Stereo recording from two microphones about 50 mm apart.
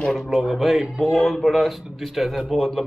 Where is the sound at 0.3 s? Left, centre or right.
Centre.